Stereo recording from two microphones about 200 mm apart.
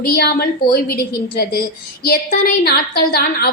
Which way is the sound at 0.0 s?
50° left (ahead or behind).